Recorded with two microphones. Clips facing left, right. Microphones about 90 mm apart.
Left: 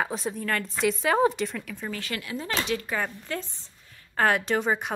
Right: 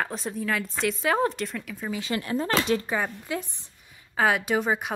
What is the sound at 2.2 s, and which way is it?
Speech, 40° right (ahead or behind).